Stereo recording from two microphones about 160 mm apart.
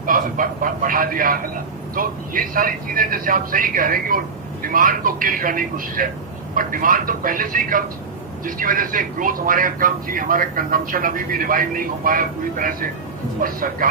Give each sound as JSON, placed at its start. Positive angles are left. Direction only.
{"t": 0.0, "sound": "speech", "side_deg": -60}